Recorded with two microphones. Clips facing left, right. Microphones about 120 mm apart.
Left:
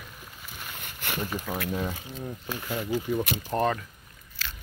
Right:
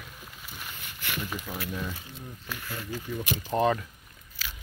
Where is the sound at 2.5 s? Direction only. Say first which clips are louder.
Left 6 dB; 20° left (ahead or behind).